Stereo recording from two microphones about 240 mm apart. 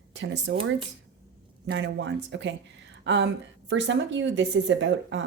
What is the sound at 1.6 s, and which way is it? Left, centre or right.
Speech, right.